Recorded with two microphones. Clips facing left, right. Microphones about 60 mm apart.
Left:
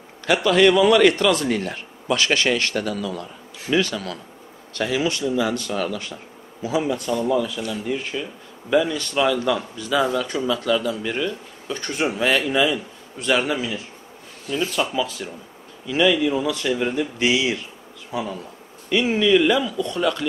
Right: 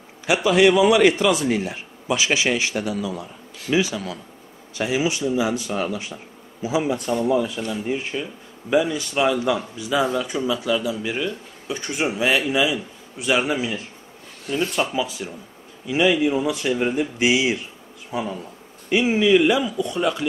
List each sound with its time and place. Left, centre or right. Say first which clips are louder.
0.3 s speech: even; centre
15.0 s speech: even; centre